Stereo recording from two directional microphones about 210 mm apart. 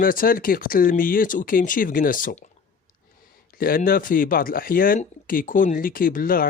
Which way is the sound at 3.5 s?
45° left (ahead or behind).